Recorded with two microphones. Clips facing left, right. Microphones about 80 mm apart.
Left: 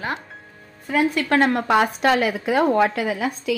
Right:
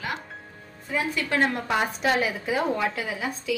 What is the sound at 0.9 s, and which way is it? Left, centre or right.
A woman's voice, left.